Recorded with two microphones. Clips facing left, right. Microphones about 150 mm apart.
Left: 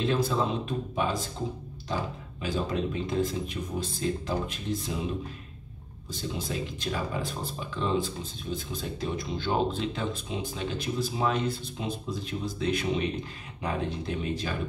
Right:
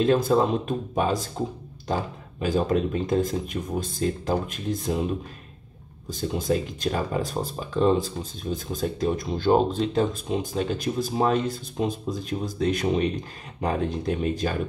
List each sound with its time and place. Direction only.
0.0 s speech: 45° right (ahead or behind)
2.4 s speech: 45° right (ahead or behind)
6.2 s speech: 45° right (ahead or behind)